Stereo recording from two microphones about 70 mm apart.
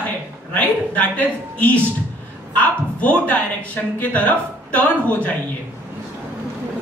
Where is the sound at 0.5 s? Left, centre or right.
Left.